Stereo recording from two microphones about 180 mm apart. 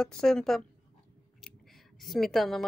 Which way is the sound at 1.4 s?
Centre (ahead or behind).